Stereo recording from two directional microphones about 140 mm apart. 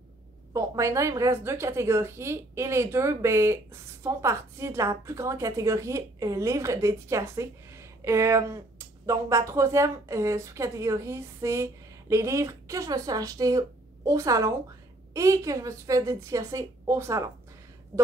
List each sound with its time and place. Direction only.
0.5 s a woman's voice: 20° right (ahead or behind)